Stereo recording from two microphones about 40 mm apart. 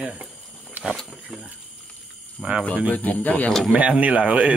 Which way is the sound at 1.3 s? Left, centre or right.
Centre.